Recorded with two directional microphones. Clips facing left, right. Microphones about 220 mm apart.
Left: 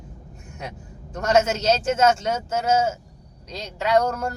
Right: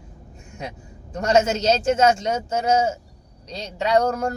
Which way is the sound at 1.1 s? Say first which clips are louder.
Right 1 dB; 10° right (ahead or behind).